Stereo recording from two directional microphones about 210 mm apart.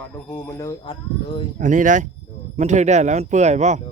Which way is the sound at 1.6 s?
40° right (ahead or behind).